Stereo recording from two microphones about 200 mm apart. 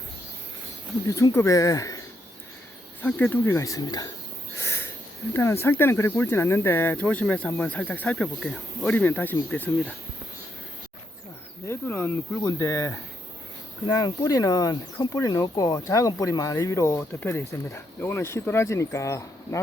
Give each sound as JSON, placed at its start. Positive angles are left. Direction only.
{"t": 1.0, "sound": "speech", "side_deg": 15}
{"t": 4.5, "sound": "a sound", "side_deg": 10}
{"t": 5.3, "sound": "speech", "side_deg": 10}
{"t": 11.6, "sound": "speech", "side_deg": 10}